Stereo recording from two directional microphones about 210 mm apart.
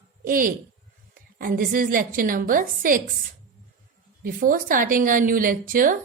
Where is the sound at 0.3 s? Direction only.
40° right (ahead or behind).